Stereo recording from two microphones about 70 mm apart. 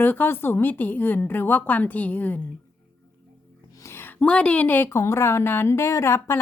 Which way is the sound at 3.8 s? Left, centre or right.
Left.